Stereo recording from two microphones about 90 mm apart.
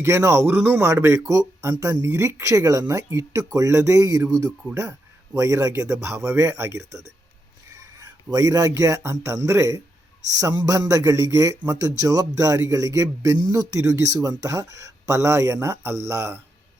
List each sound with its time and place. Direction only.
0.0 s speech: 30° right (ahead or behind)
0.9 s a man's voice: 35° right (ahead or behind)
8.3 s a man's voice: 40° right (ahead or behind)
10.5 s a man's voice: 55° right (ahead or behind)
10.8 s a man's voice: 40° right (ahead or behind)